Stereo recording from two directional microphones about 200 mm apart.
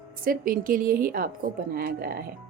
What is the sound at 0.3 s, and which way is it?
Speech, 45° right (ahead or behind).